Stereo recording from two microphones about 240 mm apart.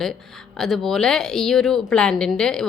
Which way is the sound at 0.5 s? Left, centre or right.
Centre.